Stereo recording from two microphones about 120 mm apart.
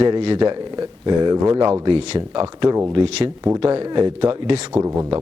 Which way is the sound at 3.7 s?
45° right (ahead or behind).